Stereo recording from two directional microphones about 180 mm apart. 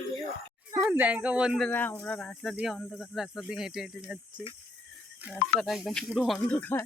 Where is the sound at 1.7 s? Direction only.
10° left (ahead or behind).